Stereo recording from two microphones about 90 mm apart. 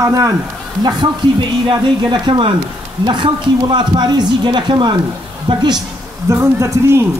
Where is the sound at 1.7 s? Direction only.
60° right (ahead or behind).